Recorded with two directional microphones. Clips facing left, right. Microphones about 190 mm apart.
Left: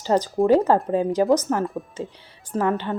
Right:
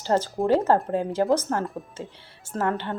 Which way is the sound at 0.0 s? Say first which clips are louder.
Left 4 dB; 15° left (ahead or behind).